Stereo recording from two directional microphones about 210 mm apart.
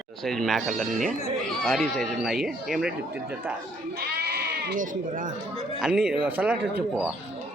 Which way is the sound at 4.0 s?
50° right (ahead or behind).